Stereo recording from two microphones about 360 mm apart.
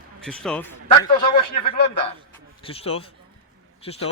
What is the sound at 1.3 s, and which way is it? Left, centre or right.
A man's voice, centre.